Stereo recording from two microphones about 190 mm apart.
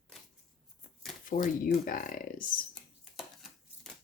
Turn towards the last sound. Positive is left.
turn(degrees=0)  # may be behind; listen again after turning